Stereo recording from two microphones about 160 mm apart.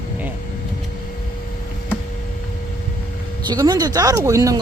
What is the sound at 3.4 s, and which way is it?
Speech, 25° right (ahead or behind).